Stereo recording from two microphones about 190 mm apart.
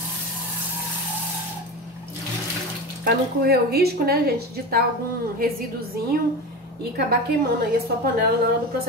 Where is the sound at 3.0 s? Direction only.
55° right (ahead or behind).